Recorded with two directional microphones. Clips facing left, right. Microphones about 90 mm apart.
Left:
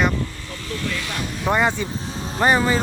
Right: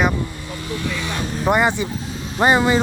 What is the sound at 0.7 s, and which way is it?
Speech, 20° right (ahead or behind).